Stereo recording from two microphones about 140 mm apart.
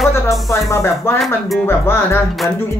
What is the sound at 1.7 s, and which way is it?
Speech, 15° left (ahead or behind).